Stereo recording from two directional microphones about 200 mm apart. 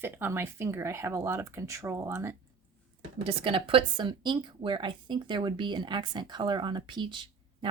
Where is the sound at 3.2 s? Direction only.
25° right (ahead or behind).